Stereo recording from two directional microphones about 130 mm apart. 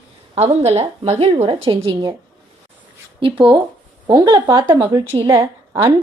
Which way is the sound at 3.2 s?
40° right (ahead or behind).